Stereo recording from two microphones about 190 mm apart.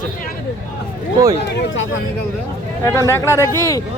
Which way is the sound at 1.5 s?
75° left (ahead or behind).